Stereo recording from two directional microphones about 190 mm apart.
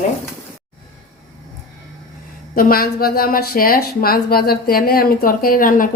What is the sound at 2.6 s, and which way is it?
A woman's voice, 50° left (ahead or behind).